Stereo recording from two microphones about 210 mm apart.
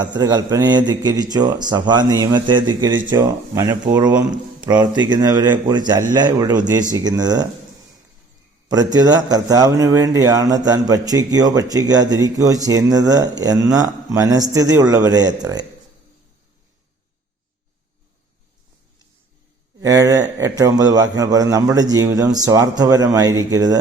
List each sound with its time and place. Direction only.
0.2 s a man's voice: 20° right (ahead or behind)
8.7 s a man's voice: 20° right (ahead or behind)
19.8 s a man's voice: 15° right (ahead or behind)